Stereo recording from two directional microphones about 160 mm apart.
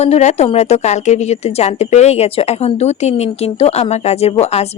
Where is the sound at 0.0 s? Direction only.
45° left (ahead or behind).